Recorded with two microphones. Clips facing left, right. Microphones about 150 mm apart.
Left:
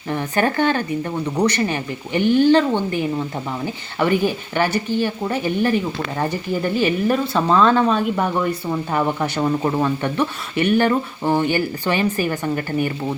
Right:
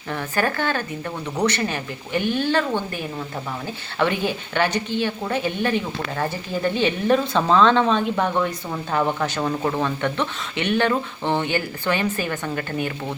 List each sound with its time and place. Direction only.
0.1 s speech: 20° left (ahead or behind)